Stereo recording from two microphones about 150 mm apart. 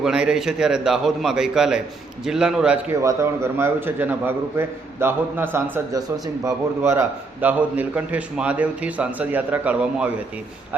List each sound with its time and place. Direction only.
0.0 s a man's voice: 5° right (ahead or behind)
2.9 s a man's voice: 20° right (ahead or behind)